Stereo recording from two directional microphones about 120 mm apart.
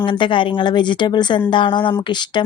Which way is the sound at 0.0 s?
45° left (ahead or behind).